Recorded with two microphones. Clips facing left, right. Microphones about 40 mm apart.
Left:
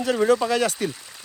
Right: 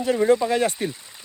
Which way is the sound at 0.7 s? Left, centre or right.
Right.